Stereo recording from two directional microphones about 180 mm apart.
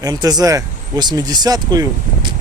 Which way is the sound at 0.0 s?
20° right (ahead or behind).